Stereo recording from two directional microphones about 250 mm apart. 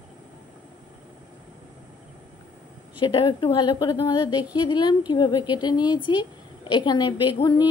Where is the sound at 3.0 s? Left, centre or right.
Centre.